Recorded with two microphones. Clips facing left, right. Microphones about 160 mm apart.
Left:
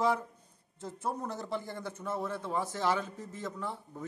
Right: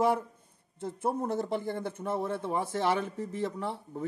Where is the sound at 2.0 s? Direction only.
25° right (ahead or behind).